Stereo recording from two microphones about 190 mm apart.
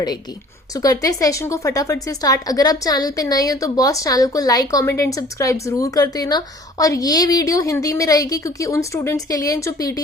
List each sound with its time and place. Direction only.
0.7 s a woman's voice: 20° left (ahead or behind)